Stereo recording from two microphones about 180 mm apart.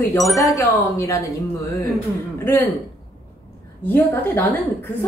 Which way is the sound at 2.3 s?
15° left (ahead or behind).